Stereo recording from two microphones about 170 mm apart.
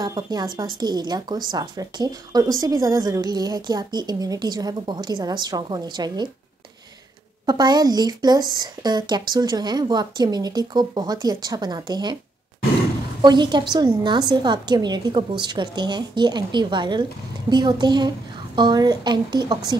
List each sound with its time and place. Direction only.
0.0 s speech: 25° right (ahead or behind)
7.4 s speech: 25° right (ahead or behind)
13.2 s speech: 25° right (ahead or behind)